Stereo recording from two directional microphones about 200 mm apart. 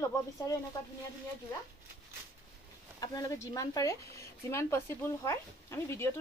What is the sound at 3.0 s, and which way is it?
A woman's voice, 20° left (ahead or behind).